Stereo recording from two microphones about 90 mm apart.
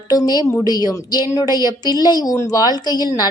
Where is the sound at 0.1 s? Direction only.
45° left (ahead or behind).